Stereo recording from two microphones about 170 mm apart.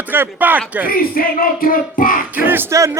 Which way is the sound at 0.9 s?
60° left (ahead or behind).